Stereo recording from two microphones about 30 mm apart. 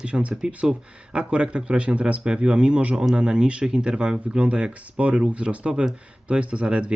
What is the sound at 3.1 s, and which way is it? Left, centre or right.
Speech, right.